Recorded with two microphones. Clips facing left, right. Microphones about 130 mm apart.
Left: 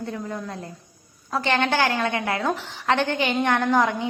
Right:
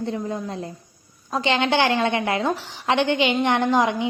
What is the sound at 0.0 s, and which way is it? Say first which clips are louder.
A woman's voice: right 4 dB; 20° right (ahead or behind).